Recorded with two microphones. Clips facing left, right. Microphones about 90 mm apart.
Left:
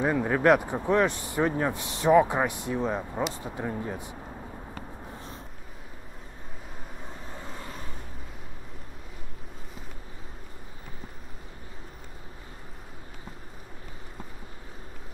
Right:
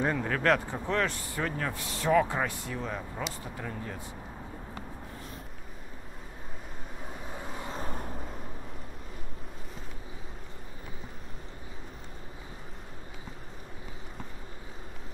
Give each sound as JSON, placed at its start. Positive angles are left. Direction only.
{"t": 0.0, "sound": "speech", "side_deg": 15}
{"t": 7.8, "sound": "vehicle", "side_deg": -45}